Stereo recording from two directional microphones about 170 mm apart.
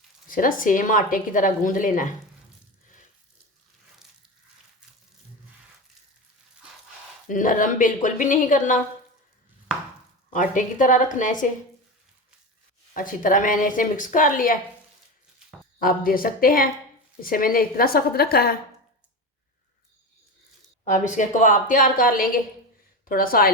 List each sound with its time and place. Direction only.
0.3 s a woman's voice: 55° left (ahead or behind)
7.3 s a woman's voice: 50° left (ahead or behind)
10.3 s a woman's voice: 50° left (ahead or behind)
12.9 s a woman's voice: 55° left (ahead or behind)
15.8 s a woman's voice: 55° left (ahead or behind)
20.8 s a woman's voice: 45° left (ahead or behind)